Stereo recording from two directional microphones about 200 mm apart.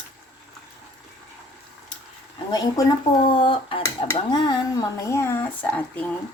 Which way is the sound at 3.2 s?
25° left (ahead or behind).